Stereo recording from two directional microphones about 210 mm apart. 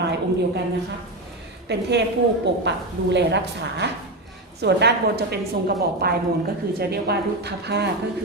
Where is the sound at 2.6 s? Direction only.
55° right (ahead or behind).